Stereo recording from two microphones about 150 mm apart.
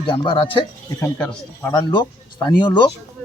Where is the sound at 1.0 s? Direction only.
5° left (ahead or behind).